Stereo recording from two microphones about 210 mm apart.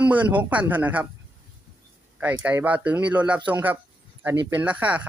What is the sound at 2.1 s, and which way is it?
Speech, 5° right (ahead or behind).